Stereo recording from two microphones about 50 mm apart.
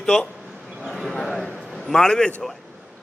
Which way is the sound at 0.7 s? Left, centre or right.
Centre.